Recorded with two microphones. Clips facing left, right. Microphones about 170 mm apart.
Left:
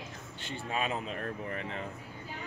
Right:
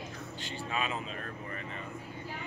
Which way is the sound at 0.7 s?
45° left (ahead or behind).